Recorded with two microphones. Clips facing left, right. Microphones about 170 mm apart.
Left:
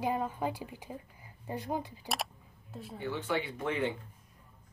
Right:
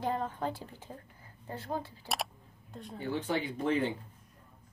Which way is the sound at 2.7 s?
5° left (ahead or behind).